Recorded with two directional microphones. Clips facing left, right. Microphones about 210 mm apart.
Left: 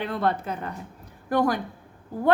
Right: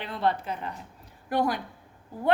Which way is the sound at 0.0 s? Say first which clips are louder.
Left 2 dB; 50° left (ahead or behind).